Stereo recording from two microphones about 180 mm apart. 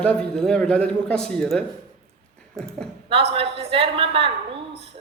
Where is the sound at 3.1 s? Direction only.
30° right (ahead or behind).